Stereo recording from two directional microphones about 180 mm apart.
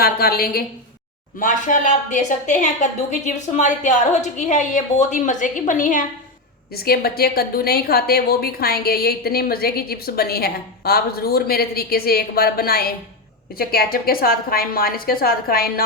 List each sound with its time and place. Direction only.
0.0 s a woman's voice: 55° left (ahead or behind)
6.7 s a woman's voice: 60° left (ahead or behind)